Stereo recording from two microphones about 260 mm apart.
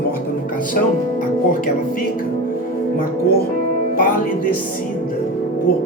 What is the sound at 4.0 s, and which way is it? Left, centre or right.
Speech, left.